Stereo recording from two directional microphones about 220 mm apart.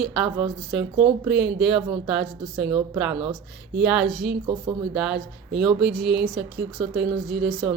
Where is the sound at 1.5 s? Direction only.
5° right (ahead or behind).